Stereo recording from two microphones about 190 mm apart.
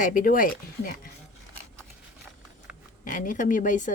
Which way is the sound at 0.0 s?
45° left (ahead or behind).